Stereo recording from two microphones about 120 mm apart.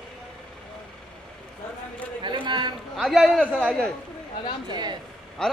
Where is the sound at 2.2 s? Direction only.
40° right (ahead or behind).